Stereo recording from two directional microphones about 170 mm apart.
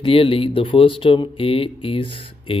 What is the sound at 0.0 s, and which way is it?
Speech, 35° left (ahead or behind).